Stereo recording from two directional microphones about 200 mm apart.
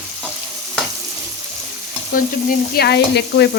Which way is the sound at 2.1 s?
50° left (ahead or behind).